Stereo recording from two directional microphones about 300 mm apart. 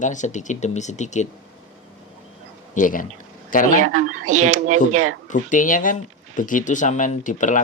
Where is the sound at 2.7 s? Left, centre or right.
Left.